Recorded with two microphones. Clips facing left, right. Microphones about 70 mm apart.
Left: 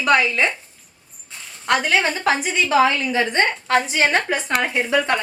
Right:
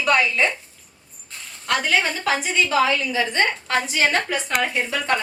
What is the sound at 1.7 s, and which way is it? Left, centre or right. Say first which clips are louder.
A woman's voice: left 3 dB; left.